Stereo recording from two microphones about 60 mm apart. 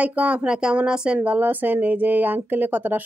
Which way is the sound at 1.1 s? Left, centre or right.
Right.